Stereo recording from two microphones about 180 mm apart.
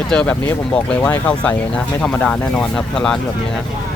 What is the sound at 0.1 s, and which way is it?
Speech, 5° left (ahead or behind).